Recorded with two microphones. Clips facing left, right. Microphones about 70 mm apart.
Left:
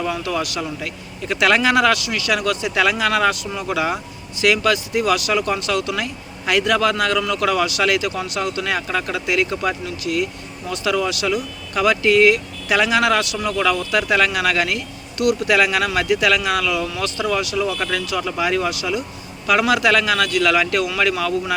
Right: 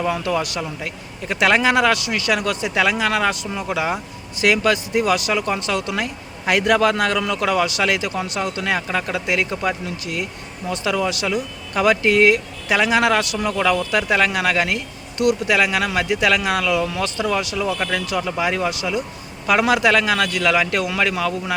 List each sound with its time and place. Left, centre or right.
0.0 s a man's voice: right
2.7 s a man's voice: right
4.4 s a man's voice: right
9.2 s speech: right
9.5 s a man's voice: centre
10.0 s a man's voice: right